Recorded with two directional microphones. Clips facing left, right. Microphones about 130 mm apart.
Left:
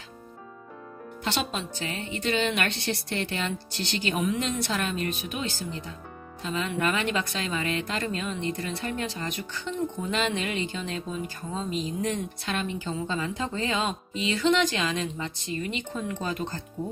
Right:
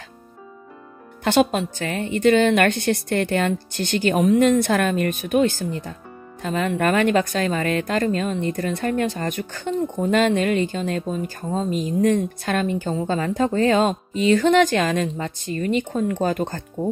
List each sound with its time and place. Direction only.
1.2 s speech: 50° right (ahead or behind)